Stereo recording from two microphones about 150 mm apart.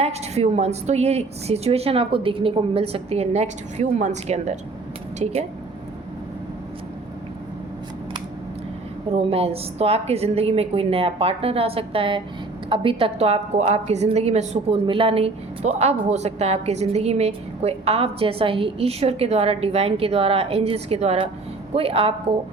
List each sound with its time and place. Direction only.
0.0 s a woman's voice: 45° right (ahead or behind)
9.1 s a woman's voice: 40° right (ahead or behind)